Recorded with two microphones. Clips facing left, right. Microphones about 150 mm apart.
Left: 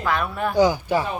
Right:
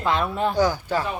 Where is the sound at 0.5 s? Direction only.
15° left (ahead or behind).